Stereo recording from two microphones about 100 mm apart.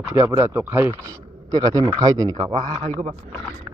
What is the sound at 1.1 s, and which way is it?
A man's voice, 40° right (ahead or behind).